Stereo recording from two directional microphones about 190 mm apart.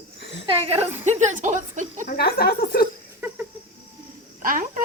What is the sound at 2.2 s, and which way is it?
Speech, 55° left (ahead or behind).